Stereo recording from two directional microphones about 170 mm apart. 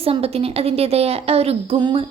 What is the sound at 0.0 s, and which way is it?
A woman's voice, 35° right (ahead or behind).